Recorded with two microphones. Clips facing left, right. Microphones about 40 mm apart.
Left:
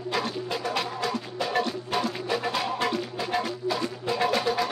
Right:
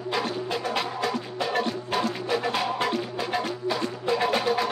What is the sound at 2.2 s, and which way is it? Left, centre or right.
Music, centre.